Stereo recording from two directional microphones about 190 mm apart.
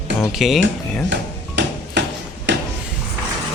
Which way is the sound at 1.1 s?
65° right (ahead or behind).